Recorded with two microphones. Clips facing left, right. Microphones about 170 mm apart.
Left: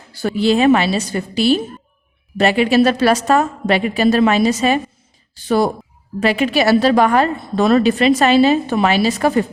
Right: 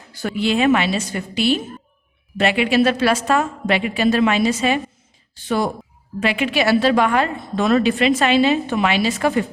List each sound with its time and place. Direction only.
0.1 s a woman's voice: 35° left (ahead or behind)